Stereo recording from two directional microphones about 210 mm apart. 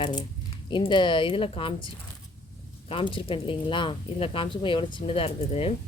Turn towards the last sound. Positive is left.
turn(degrees=25)  # may be behind; listen again after turning